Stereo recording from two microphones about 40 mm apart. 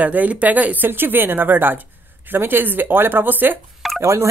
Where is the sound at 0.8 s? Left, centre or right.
Right.